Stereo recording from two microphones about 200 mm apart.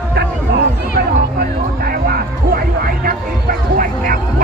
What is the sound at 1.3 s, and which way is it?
Music, 50° right (ahead or behind).